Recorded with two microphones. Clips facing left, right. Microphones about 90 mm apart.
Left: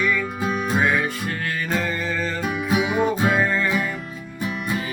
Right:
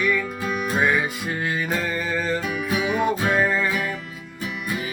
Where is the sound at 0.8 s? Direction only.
5° right (ahead or behind).